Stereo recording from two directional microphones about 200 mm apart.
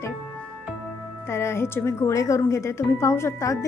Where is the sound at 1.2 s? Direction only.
15° left (ahead or behind).